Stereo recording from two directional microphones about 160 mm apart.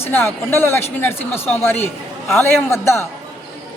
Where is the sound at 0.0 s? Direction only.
15° left (ahead or behind).